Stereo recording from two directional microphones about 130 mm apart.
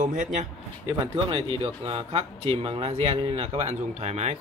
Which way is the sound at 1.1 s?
40° right (ahead or behind).